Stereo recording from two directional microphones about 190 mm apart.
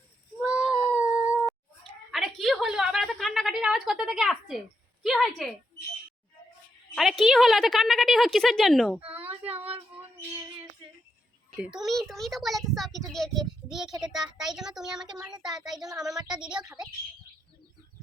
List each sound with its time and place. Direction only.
0.4 s a sound: 5° right (ahead or behind)
5.0 s a woman's voice: centre (ahead or behind)
6.9 s a woman's voice: centre (ahead or behind)
11.5 s a woman's voice: 5° right (ahead or behind)
15.0 s speech: 20° right (ahead or behind)
15.6 s a woman's voice: centre (ahead or behind)